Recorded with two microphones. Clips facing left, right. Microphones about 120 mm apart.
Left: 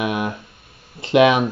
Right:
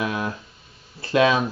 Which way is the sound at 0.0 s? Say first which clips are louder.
Left 3 dB; 20° left (ahead or behind).